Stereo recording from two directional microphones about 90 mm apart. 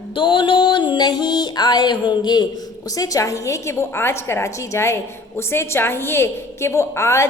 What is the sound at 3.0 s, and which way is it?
A woman's voice, 40° left (ahead or behind).